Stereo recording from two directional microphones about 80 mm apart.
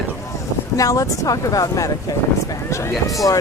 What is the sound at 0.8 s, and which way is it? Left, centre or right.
Speech, left.